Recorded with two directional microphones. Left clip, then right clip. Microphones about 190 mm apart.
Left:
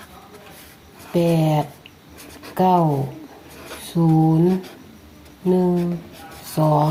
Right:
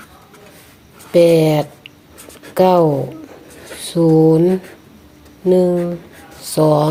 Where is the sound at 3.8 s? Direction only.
55° right (ahead or behind).